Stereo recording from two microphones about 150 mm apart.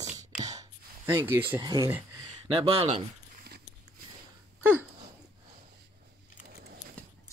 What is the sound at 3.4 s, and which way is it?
Biting, 90° right.